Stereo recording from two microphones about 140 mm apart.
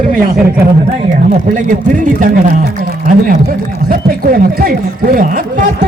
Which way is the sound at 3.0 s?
85° right.